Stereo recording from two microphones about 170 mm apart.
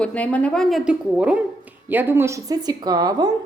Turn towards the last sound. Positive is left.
turn(degrees=-20)  # may be behind; listen again after turning